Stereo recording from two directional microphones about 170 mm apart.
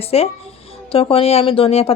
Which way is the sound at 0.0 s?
35° left (ahead or behind).